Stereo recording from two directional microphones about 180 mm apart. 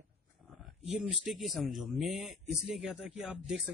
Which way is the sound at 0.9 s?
5° right (ahead or behind).